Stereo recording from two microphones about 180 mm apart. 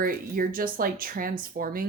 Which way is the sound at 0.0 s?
50° right (ahead or behind).